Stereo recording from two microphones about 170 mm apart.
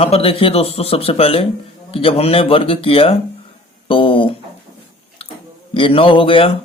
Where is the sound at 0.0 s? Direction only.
35° left (ahead or behind).